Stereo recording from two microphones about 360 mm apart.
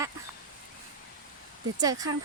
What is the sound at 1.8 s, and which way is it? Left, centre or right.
Speech, centre.